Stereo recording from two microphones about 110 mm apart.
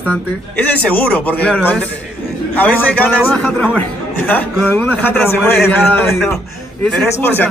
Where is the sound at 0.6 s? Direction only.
15° left (ahead or behind).